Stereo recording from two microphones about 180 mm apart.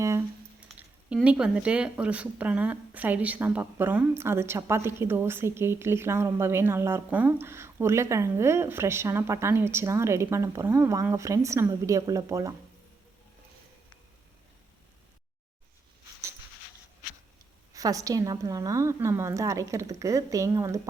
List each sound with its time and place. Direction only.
0.0 s speech: 15° right (ahead or behind)
17.7 s speech: 20° right (ahead or behind)